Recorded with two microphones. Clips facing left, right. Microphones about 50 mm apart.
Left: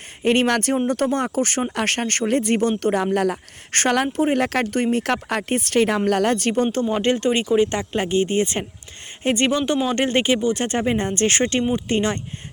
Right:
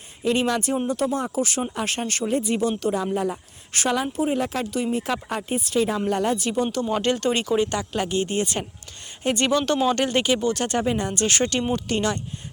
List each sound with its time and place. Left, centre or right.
0.2 s speech: left
1.7 s speech: left
3.8 s speech: left
6.9 s speech: left
9.6 s speech: centre
9.9 s speech: left